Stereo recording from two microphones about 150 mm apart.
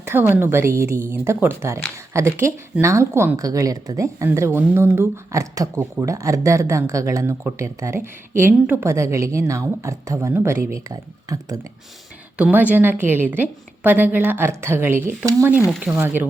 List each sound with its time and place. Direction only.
0.0 s a woman's voice: 15° right (ahead or behind)
12.4 s a woman's voice: 10° right (ahead or behind)